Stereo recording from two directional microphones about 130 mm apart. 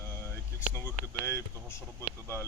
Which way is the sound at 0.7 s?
20° left (ahead or behind).